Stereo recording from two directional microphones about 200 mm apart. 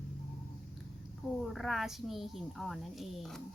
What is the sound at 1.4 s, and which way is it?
Speech, centre (ahead or behind).